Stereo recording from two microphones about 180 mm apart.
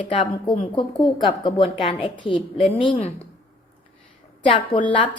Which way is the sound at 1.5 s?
25° left (ahead or behind).